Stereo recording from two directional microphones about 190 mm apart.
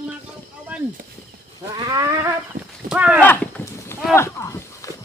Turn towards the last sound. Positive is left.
turn(degrees=15)  # may be behind; listen again after turning